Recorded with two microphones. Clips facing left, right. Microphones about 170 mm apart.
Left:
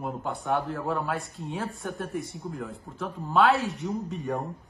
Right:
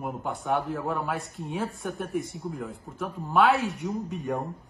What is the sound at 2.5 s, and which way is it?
Speech, centre (ahead or behind).